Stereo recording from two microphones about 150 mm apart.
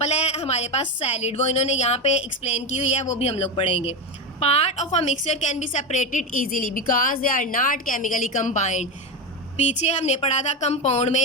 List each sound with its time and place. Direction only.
0.0 s a woman's voice: 45° left (ahead or behind)